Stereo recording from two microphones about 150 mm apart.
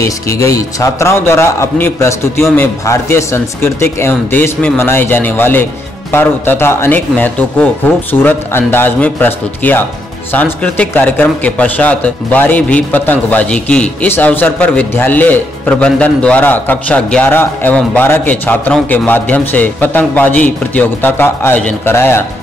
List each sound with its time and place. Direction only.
0.0 s a man's voice: 20° left (ahead or behind)